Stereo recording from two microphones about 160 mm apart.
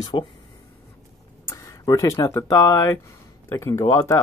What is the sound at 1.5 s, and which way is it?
Speech, 20° left (ahead or behind).